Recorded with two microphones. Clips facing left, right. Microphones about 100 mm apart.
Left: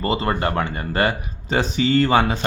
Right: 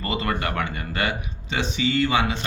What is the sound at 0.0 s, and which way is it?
Speech, 30° left (ahead or behind).